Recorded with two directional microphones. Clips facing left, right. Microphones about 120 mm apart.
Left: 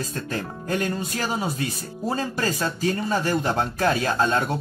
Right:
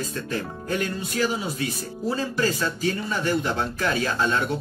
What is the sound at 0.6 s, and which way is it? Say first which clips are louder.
Speech: left 3 dB; 40° left (ahead or behind).